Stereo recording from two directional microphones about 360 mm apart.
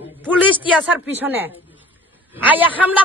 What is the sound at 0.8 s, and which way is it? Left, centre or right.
A man's voice, centre.